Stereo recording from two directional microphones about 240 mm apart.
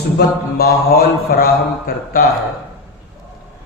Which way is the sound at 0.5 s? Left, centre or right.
Left.